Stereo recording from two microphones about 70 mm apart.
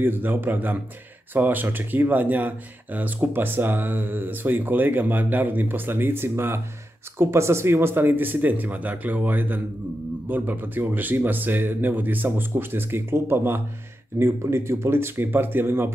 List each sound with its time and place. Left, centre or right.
0.0 s speech: right